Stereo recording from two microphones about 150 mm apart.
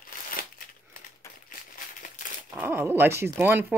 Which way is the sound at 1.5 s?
65° left (ahead or behind).